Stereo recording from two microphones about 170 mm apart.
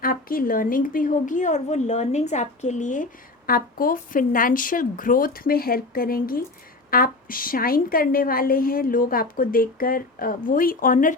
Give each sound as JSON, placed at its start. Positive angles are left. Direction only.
{"t": 0.0, "sound": "a woman's voice", "side_deg": 55}